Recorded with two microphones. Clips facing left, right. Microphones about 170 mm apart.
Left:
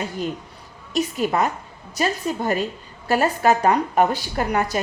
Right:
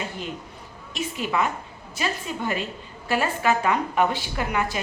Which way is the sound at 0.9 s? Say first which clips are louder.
Left 5 dB; 40° left (ahead or behind).